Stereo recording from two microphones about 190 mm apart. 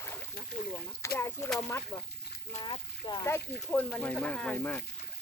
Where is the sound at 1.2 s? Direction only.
10° left (ahead or behind).